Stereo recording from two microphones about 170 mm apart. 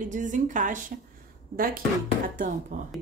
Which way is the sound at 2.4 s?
50° right (ahead or behind).